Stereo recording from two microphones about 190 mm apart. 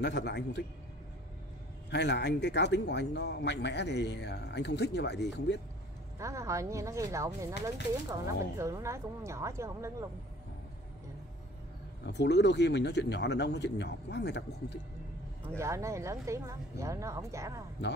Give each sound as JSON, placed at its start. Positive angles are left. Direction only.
{"t": 0.0, "sound": "speech", "side_deg": 65}
{"t": 1.9, "sound": "speech", "side_deg": 65}
{"t": 6.1, "sound": "speech", "side_deg": -15}
{"t": 12.1, "sound": "speech", "side_deg": 65}
{"t": 15.4, "sound": "speech", "side_deg": -15}